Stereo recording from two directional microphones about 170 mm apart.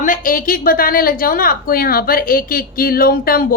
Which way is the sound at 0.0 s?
55° left (ahead or behind).